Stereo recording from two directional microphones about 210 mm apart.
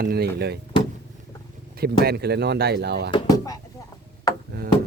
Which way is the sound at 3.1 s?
20° left (ahead or behind).